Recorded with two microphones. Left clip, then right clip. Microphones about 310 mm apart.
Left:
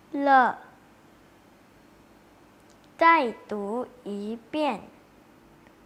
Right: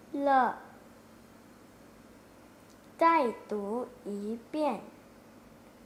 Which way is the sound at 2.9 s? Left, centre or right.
Centre.